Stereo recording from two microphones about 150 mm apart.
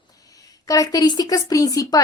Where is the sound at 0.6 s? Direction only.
25° left (ahead or behind).